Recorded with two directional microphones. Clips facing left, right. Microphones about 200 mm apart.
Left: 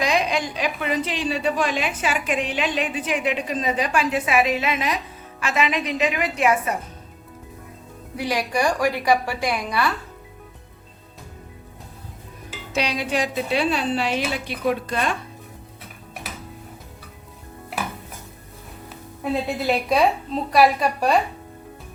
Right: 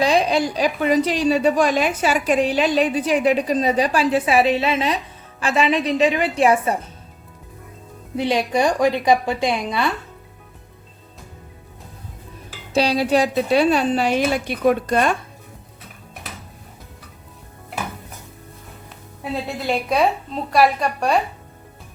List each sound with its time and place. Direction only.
0.0 s a woman's voice: 35° right (ahead or behind)
8.1 s a woman's voice: 25° right (ahead or behind)
12.7 s a woman's voice: 35° right (ahead or behind)
19.6 s speech: centre (ahead or behind)